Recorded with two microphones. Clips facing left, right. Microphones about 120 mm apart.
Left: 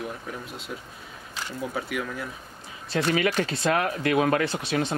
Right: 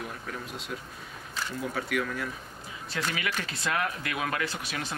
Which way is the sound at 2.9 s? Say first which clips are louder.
Left 9 dB; 35° left (ahead or behind).